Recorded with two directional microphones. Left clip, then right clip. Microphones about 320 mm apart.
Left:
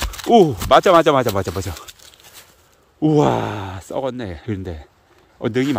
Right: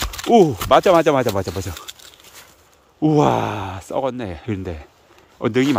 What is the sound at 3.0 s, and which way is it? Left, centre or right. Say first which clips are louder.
Speech: even; centre.